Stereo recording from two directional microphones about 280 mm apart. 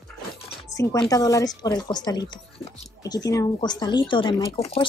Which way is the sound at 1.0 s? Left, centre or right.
Centre.